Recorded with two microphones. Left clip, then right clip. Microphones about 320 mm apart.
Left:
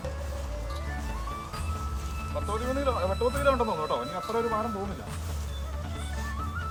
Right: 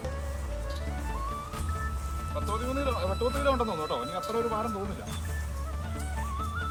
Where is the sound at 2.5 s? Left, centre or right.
Centre.